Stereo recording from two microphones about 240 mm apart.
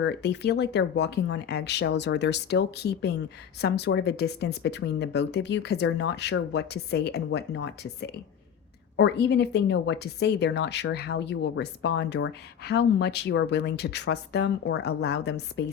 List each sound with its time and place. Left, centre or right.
0.0 s speech: left
9.0 s speech: left